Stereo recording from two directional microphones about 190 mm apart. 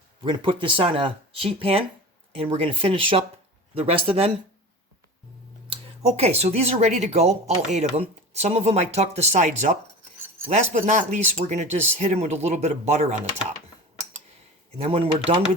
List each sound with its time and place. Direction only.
0.2 s speech: 25° right (ahead or behind)
5.6 s speech: 30° right (ahead or behind)
14.8 s speech: 30° right (ahead or behind)